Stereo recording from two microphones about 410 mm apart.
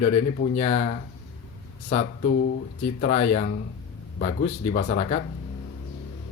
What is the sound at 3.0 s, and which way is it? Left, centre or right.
Speech, centre.